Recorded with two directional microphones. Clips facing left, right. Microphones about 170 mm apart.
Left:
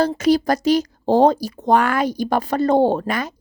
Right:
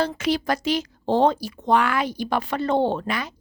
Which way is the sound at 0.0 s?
40° left (ahead or behind).